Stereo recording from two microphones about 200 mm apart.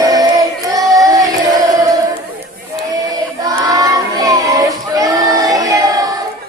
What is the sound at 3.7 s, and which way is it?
Child singing, 20° right (ahead or behind).